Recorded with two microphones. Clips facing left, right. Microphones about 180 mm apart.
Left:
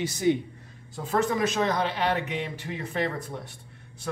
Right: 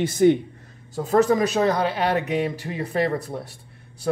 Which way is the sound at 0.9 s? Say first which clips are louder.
Right 7 dB; 40° right (ahead or behind).